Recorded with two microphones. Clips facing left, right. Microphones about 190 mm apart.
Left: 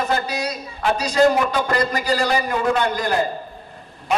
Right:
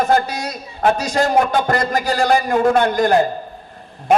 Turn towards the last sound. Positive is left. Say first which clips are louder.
# right 6 dB
turn(degrees=-50)  # may be behind; listen again after turning